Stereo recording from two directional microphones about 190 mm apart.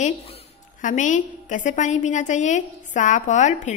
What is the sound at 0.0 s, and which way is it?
Speech, 30° left (ahead or behind).